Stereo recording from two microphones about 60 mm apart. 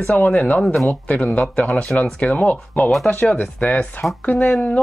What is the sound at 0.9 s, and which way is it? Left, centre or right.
Speech, left.